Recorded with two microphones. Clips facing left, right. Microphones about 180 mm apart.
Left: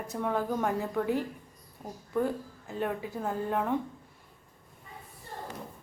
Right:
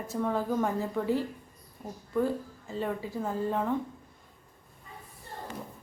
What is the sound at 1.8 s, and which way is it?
Speech, 20° left (ahead or behind).